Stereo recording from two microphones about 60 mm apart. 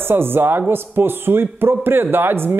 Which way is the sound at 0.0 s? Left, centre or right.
Right.